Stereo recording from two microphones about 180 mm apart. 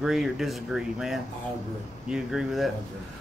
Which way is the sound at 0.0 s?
Centre (ahead or behind).